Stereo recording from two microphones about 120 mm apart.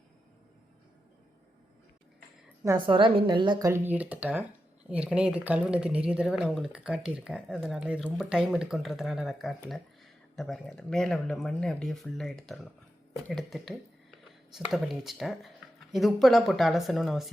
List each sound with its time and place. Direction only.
2.7 s a woman's voice: 45° right (ahead or behind)
3.7 s speech: 15° right (ahead or behind)